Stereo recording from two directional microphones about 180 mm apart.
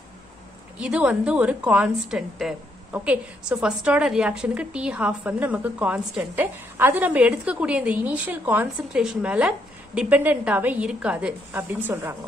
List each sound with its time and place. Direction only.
0.7 s a woman's voice: 5° right (ahead or behind)